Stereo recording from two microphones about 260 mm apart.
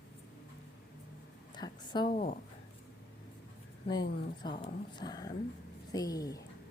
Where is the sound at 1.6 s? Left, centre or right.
Centre.